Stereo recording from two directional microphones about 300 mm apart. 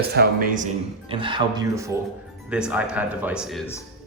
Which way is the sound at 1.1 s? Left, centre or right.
Centre.